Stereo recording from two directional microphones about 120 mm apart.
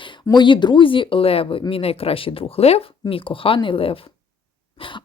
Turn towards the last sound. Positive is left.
turn(degrees=45)  # may be behind; listen again after turning